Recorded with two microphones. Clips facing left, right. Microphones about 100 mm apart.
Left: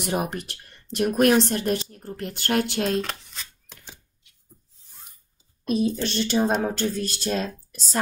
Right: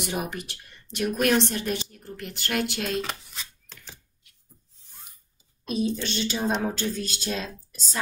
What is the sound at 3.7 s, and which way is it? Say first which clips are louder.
Typewriter: even; 15° left (ahead or behind).